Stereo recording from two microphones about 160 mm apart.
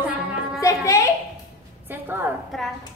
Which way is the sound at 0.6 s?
20° left (ahead or behind).